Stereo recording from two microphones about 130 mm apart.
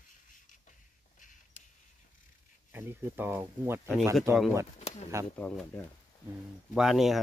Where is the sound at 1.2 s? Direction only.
85° left.